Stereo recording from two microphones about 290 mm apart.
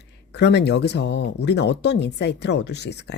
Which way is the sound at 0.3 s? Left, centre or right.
Left.